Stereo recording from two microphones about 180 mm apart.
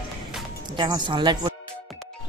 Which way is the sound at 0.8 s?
25° right (ahead or behind).